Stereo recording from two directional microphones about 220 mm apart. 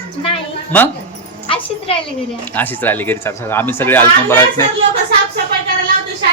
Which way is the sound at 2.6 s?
10° left (ahead or behind).